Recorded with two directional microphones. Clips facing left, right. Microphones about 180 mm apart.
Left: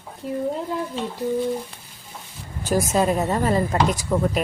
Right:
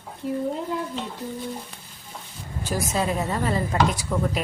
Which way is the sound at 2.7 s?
45° left (ahead or behind).